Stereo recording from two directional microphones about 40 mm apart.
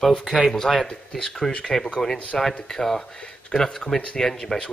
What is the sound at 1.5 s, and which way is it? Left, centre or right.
Speech, left.